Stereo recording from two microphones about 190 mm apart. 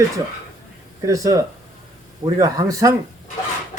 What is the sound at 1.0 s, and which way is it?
Speech, 15° right (ahead or behind).